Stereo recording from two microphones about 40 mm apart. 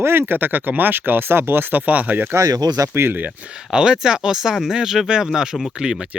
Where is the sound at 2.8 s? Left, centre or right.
Right.